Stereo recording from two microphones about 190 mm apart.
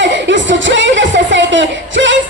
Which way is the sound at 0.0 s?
70° right (ahead or behind).